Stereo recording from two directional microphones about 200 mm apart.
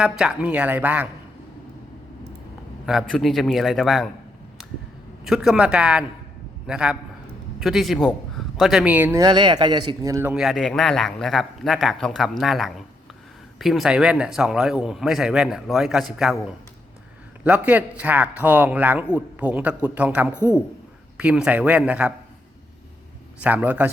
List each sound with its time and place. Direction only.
0.0 s a man's voice: 5° right (ahead or behind)
2.8 s speech: centre (ahead or behind)
5.2 s a man's voice: centre (ahead or behind)
10.3 s speech: centre (ahead or behind)
17.4 s a man's voice: 10° right (ahead or behind)
23.4 s a man's voice: 10° right (ahead or behind)